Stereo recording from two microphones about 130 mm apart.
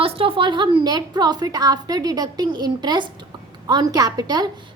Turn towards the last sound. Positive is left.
turn(degrees=-30)  # may be behind; listen again after turning